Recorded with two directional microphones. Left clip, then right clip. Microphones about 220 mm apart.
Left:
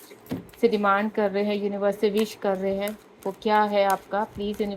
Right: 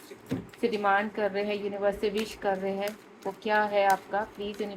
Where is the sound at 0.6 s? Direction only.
40° left (ahead or behind).